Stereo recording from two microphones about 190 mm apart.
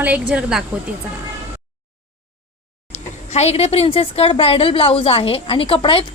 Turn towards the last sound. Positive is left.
turn(degrees=25)  # may be behind; listen again after turning